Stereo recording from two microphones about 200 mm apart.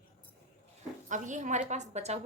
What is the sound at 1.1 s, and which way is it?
A woman's voice, 40° right (ahead or behind).